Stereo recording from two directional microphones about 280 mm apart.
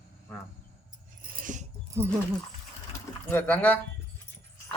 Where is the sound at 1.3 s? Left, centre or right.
Right.